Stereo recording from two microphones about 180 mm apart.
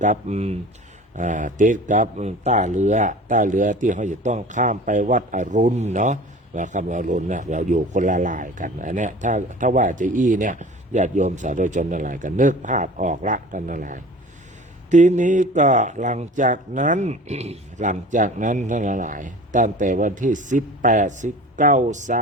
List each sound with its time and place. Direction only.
0.0 s speech: 40° right (ahead or behind)